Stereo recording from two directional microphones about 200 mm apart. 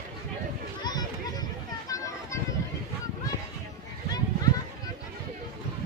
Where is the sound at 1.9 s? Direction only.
15° left (ahead or behind).